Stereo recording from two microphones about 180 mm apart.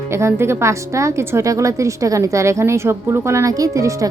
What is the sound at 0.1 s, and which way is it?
A woman's voice, 15° right (ahead or behind).